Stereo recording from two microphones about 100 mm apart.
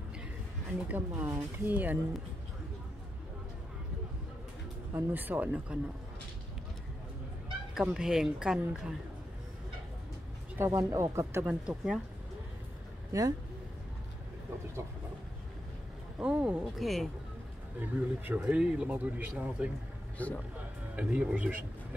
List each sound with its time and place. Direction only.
0.8 s speech: 20° right (ahead or behind)
4.9 s speech: 20° right (ahead or behind)
7.7 s speech: 5° right (ahead or behind)
10.6 s speech: 35° right (ahead or behind)
11.4 s speech: 10° right (ahead or behind)
13.1 s speech: 35° right (ahead or behind)
16.2 s speech: 10° right (ahead or behind)
16.7 s speech: centre (ahead or behind)
17.7 s speech: 20° right (ahead or behind)
20.2 s speech: 15° left (ahead or behind)
20.9 s speech: 10° right (ahead or behind)